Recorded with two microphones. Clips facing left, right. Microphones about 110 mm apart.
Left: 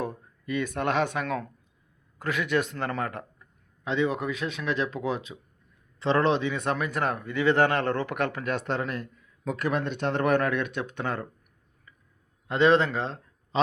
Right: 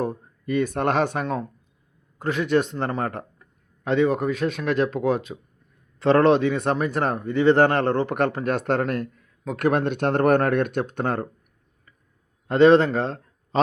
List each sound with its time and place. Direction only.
0.0 s a man's voice: 40° right (ahead or behind)
12.5 s a man's voice: 40° right (ahead or behind)